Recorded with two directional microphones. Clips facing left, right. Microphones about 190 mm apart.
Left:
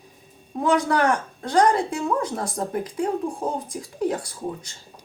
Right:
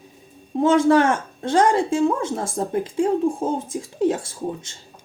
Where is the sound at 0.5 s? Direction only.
25° right (ahead or behind).